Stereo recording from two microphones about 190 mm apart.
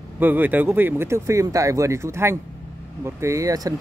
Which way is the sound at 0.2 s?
10° right (ahead or behind).